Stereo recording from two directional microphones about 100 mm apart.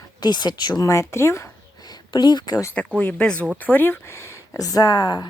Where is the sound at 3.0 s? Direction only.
10° left (ahead or behind); by 5.3 s 45° left (ahead or behind).